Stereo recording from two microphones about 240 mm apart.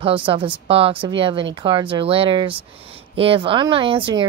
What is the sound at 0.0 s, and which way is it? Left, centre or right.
Speech, right.